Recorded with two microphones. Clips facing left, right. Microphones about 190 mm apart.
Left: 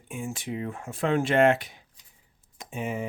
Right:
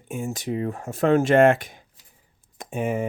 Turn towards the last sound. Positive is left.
turn(degrees=-50)  # may be behind; listen again after turning